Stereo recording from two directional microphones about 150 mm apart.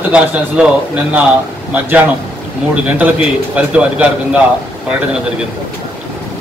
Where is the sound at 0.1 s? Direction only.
10° right (ahead or behind).